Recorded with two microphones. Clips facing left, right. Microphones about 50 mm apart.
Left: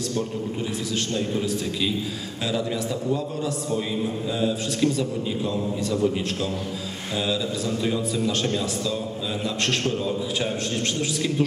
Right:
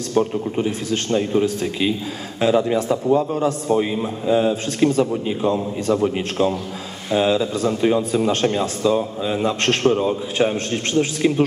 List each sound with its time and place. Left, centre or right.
0.1 s a man's voice: right